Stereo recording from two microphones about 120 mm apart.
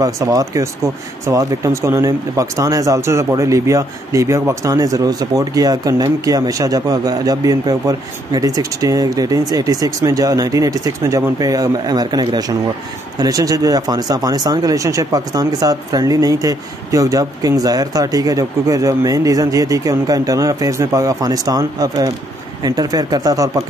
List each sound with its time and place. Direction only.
0.0 s speech: 30° right (ahead or behind)